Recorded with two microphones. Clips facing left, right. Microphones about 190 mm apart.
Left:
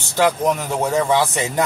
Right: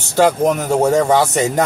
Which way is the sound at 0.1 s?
45° right (ahead or behind).